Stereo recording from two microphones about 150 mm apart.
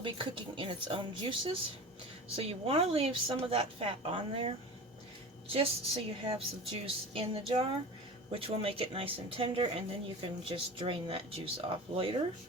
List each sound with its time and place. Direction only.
0.0 s speech: 35° right (ahead or behind)